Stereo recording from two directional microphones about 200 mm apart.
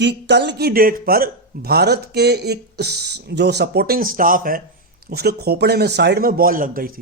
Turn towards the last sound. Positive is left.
turn(degrees=-45)  # may be behind; listen again after turning